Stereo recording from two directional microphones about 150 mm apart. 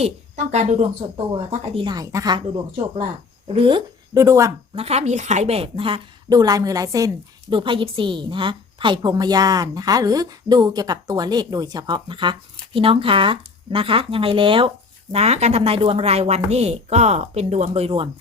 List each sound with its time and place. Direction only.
0.0 s a woman's voice: 50° right (ahead or behind)
1.1 s a woman's voice: 35° right (ahead or behind); by 4.5 s 20° right (ahead or behind)
4.7 s a woman's voice: 45° right (ahead or behind)
6.3 s a woman's voice: 25° right (ahead or behind)
7.5 s a woman's voice: 35° right (ahead or behind)
15.1 s a woman's voice: 45° right (ahead or behind)